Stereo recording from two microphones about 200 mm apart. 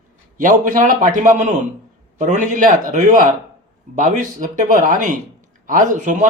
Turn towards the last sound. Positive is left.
turn(degrees=-40)  # may be behind; listen again after turning